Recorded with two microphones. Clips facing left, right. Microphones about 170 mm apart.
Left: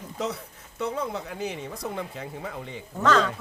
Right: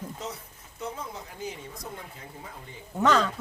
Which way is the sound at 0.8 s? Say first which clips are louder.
Left 7 dB; 70° left (ahead or behind).